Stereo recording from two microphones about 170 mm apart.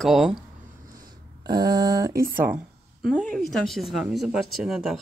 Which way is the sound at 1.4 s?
25° right (ahead or behind).